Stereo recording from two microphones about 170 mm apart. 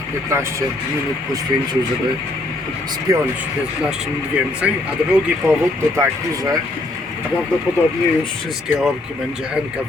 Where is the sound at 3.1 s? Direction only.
20° right (ahead or behind).